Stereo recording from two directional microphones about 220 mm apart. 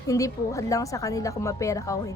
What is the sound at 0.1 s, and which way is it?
A woman's voice, 15° left (ahead or behind).